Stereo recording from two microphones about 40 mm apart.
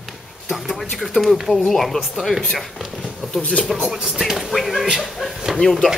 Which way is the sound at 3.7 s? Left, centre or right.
Centre.